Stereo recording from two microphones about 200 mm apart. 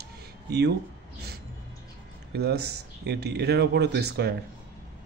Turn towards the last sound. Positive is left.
turn(degrees=-55)  # may be behind; listen again after turning